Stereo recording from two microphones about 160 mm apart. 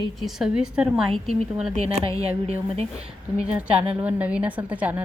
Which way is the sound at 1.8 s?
40° right (ahead or behind).